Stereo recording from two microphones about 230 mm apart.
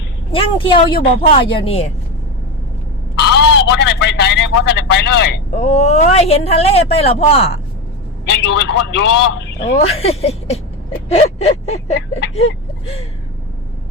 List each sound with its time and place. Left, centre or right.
0.3 s speech: left
3.3 s speech: left
5.5 s speech: left
8.3 s speech: left
10.0 s speech: left